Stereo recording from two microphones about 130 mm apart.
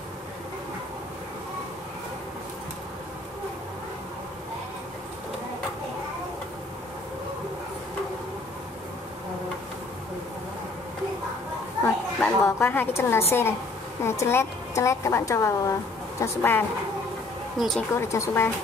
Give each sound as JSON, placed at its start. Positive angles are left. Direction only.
{"t": 11.8, "sound": "a sound", "side_deg": 15}
{"t": 13.3, "sound": "a woman's voice", "side_deg": 20}
{"t": 17.6, "sound": "speech", "side_deg": 0}
{"t": 18.0, "sound": "a woman's voice", "side_deg": 20}